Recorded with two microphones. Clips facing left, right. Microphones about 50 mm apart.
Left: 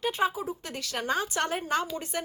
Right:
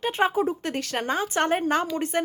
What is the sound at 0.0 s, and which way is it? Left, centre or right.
A woman's voice, right.